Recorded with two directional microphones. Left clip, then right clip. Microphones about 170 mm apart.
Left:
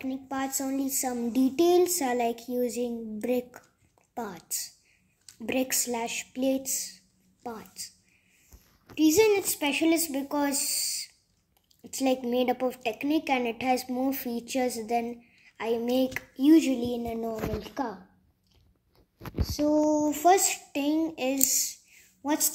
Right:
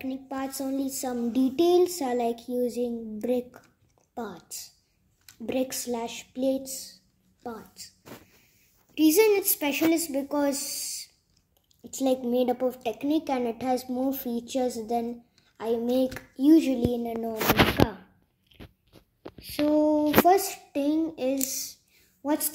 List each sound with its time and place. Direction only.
0.0 s a woman's voice: 5° left (ahead or behind)
8.9 s a woman's voice: centre (ahead or behind)
19.7 s a sound: 15° right (ahead or behind)
20.2 s a woman's voice: centre (ahead or behind)